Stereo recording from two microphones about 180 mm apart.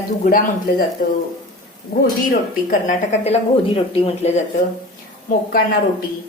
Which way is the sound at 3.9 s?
30° left (ahead or behind).